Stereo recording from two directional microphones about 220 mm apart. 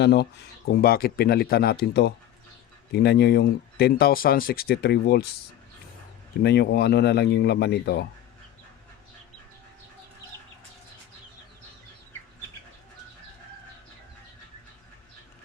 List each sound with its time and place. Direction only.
0.0 s speech: 50° left (ahead or behind)
6.4 s speech: 50° left (ahead or behind)